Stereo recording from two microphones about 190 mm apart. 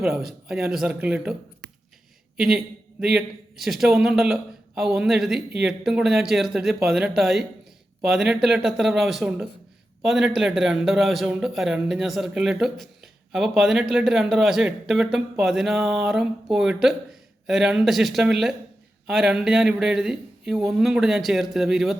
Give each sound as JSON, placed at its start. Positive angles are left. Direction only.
{"t": 0.0, "sound": "a man's voice", "side_deg": 0}
{"t": 2.4, "sound": "a man's voice", "side_deg": -5}